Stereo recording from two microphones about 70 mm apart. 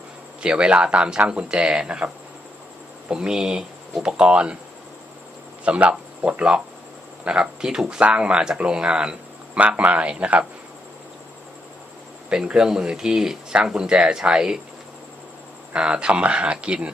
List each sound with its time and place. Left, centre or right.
0.4 s speech: centre
3.1 s speech: centre
5.6 s speech: centre
12.3 s speech: centre
15.7 s speech: centre